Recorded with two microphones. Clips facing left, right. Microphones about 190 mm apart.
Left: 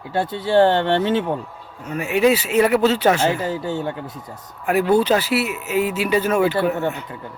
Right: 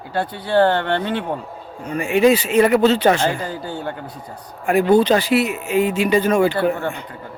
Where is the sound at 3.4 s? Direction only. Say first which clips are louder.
Left 3 dB; 25° left (ahead or behind).